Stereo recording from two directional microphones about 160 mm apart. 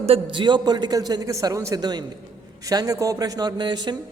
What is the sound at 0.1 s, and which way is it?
A man's voice, 30° right (ahead or behind).